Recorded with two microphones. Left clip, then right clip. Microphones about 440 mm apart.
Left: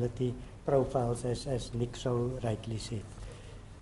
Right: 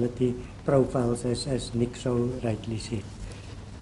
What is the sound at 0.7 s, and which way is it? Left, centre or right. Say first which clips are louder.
Speech: right 5 dB; centre.